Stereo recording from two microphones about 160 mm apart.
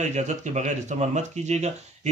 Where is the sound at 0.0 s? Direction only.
45° right (ahead or behind).